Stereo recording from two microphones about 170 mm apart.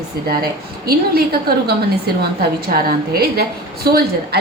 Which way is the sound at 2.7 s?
65° right (ahead or behind).